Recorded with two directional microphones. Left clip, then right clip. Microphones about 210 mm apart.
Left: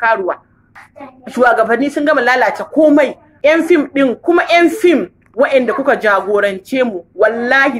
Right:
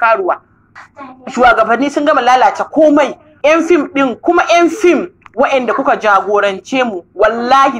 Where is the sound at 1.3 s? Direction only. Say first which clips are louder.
Right 2 dB; 10° left (ahead or behind).